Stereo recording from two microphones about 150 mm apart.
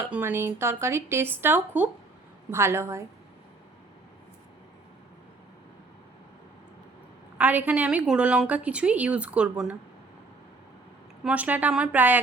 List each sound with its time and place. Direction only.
0.0 s a woman's voice: 15° right (ahead or behind)
7.3 s a woman's voice: 10° right (ahead or behind)
11.2 s a woman's voice: 10° right (ahead or behind)